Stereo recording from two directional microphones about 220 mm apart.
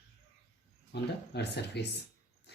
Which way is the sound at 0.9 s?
50° left (ahead or behind).